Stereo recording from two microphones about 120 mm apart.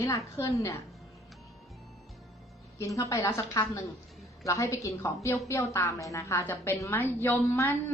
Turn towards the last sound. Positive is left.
turn(degrees=20)  # may be behind; listen again after turning